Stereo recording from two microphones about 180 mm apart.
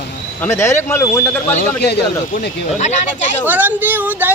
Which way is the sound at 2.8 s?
40° left (ahead or behind).